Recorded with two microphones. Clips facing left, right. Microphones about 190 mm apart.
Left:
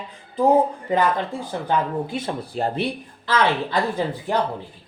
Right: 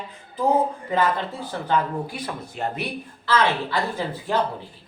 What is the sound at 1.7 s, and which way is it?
Speech, 25° left (ahead or behind).